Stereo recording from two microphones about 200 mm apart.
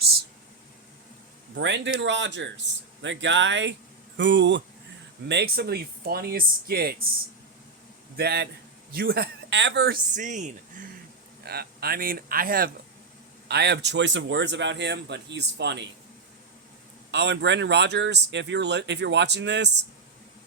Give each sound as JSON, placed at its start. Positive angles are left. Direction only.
{"t": 1.5, "sound": "speech", "side_deg": -65}
{"t": 8.1, "sound": "speech", "side_deg": -55}
{"t": 11.4, "sound": "speech", "side_deg": -50}
{"t": 13.5, "sound": "speech", "side_deg": -55}
{"t": 17.1, "sound": "speech", "side_deg": -60}